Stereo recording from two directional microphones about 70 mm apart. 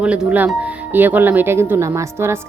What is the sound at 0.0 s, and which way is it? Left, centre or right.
Speech, centre.